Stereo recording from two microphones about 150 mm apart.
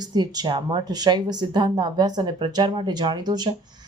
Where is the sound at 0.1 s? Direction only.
30° right (ahead or behind).